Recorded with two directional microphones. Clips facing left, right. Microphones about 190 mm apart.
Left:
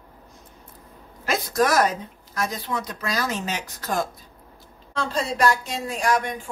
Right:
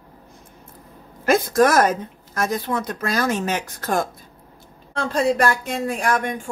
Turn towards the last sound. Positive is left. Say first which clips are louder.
# right 1 dB
turn(degrees=-50)  # may be behind; listen again after turning